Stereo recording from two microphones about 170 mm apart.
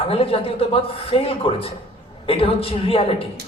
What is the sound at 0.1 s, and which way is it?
A man's voice, 35° left (ahead or behind).